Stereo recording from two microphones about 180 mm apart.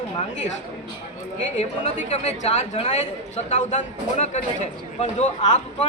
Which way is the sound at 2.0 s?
35° left (ahead or behind).